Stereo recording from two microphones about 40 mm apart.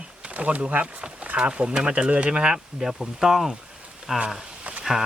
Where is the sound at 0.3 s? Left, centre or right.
Right.